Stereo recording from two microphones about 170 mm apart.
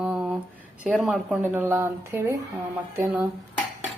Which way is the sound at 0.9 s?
Centre (ahead or behind).